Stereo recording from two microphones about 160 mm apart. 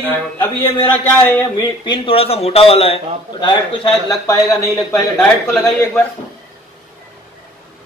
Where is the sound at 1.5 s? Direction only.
30° left (ahead or behind).